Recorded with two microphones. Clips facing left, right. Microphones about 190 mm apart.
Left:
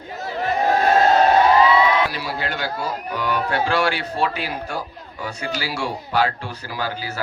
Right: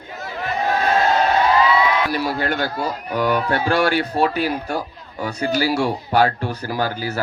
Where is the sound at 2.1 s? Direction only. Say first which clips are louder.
Right 6 dB; 50° right (ahead or behind).